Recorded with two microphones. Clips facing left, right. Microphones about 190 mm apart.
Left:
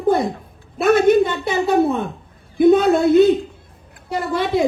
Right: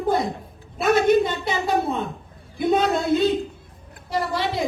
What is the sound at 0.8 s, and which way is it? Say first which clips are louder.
A man's voice: left 4 dB; 55° left (ahead or behind).